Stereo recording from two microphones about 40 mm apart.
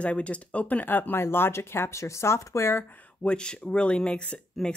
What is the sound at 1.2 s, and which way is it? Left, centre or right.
Speech, left.